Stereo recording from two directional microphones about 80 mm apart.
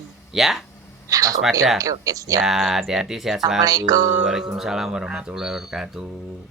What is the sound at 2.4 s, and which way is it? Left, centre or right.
Speech, centre.